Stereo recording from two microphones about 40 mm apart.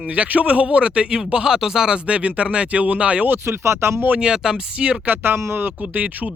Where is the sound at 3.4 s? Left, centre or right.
Right.